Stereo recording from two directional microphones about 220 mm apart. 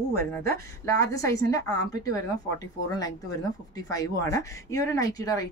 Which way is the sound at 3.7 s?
15° left (ahead or behind).